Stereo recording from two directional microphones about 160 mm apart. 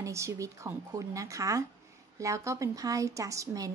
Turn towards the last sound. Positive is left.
turn(degrees=-20)  # may be behind; listen again after turning